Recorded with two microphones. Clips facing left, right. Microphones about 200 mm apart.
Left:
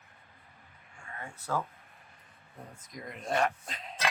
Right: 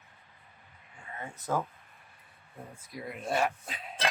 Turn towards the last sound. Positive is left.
turn(degrees=-5)  # may be behind; listen again after turning